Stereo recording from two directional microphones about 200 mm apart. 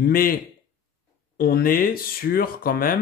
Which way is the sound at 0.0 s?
45° left (ahead or behind).